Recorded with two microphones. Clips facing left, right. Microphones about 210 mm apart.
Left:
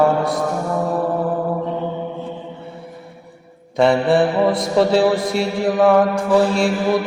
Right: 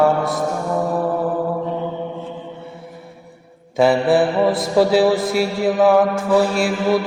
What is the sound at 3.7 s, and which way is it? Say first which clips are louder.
Mantra: even; 5° right (ahead or behind).